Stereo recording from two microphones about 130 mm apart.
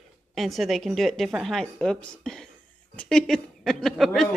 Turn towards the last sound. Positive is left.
turn(degrees=0)  # may be behind; listen again after turning